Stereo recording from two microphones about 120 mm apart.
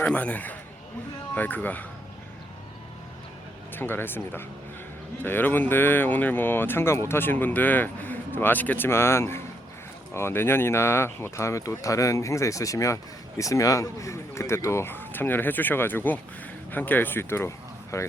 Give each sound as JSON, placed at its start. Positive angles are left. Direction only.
{"t": 0.0, "sound": "speech", "side_deg": 10}
{"t": 3.8, "sound": "speech", "side_deg": 20}